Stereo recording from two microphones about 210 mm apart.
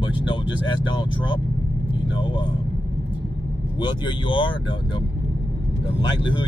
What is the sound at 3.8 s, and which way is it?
Speech, 20° left (ahead or behind).